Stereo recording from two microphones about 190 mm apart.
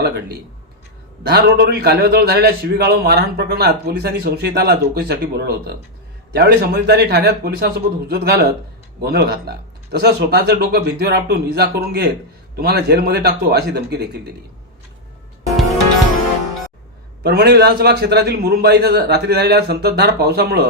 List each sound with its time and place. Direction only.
0.0 s a man's voice: 60° right (ahead or behind)
17.2 s a man's voice: 60° right (ahead or behind)